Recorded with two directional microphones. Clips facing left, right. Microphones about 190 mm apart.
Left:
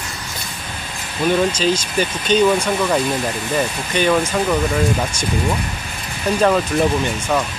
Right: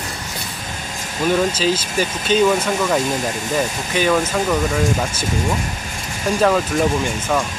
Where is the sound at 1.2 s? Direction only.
5° right (ahead or behind).